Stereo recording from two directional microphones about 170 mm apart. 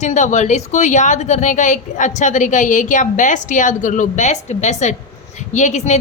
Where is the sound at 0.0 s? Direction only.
45° left (ahead or behind).